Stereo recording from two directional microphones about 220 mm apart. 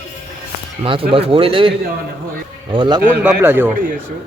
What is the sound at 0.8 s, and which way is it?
Speech, 25° right (ahead or behind).